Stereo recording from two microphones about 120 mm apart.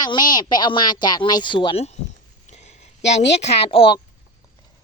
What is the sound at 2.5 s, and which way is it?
Speech, 65° left (ahead or behind).